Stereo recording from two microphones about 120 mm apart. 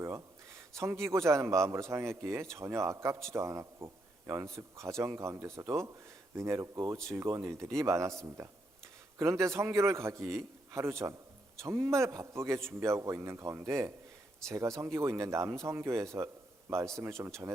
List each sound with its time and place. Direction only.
1.0 s speech: 25° right (ahead or behind)